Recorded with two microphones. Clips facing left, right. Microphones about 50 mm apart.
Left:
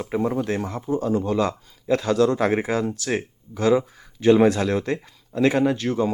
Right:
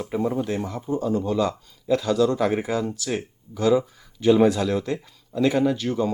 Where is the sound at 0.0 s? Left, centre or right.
Left.